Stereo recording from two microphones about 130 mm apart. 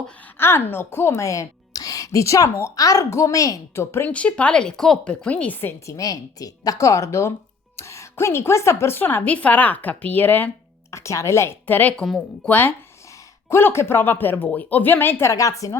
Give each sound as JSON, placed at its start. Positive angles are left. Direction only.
{"t": 0.3, "sound": "a woman's voice", "side_deg": 20}
{"t": 4.1, "sound": "a woman's voice", "side_deg": 10}